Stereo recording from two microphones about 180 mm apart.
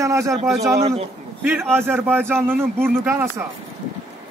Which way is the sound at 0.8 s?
35° right (ahead or behind).